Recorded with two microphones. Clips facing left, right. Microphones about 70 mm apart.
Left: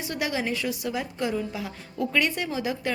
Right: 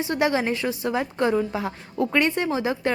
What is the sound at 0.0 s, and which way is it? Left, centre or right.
A woman's voice, right.